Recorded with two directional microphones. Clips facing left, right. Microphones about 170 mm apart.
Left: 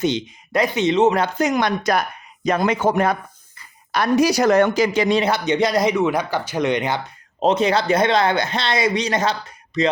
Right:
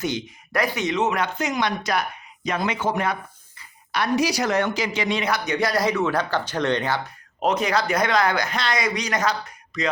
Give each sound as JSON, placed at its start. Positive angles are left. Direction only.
{"t": 0.0, "sound": "speech", "side_deg": 20}
{"t": 7.3, "sound": "speech", "side_deg": 25}